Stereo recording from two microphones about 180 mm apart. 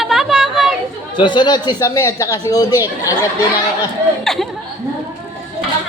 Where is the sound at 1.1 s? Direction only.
25° left (ahead or behind).